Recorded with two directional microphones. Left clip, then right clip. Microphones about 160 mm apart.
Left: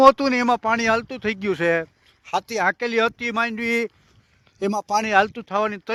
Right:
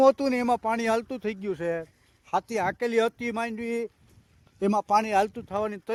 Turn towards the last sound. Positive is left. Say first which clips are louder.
# left 7 dB
turn(degrees=0)  # may be behind; listen again after turning